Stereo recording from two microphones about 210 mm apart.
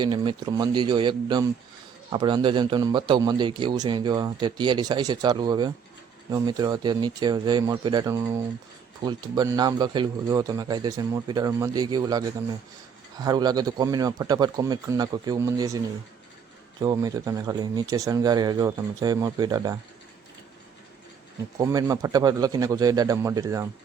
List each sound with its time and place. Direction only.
0.0 s a man's voice: 20° right (ahead or behind)
16.8 s speech: 15° right (ahead or behind)
21.6 s speech: 15° right (ahead or behind)